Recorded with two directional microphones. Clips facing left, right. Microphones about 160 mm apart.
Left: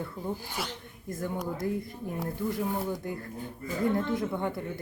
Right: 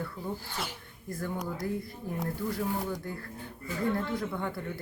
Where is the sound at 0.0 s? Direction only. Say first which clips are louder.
Left 2 dB; 15° left (ahead or behind).